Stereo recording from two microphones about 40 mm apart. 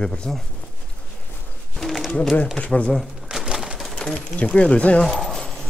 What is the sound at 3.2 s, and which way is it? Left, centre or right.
Wood, centre.